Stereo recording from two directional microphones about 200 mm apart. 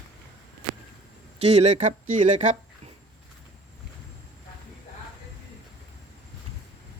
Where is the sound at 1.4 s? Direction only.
30° right (ahead or behind).